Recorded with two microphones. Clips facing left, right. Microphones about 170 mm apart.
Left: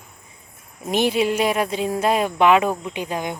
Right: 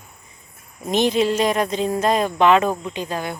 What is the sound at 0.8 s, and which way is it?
Speech, 10° left (ahead or behind).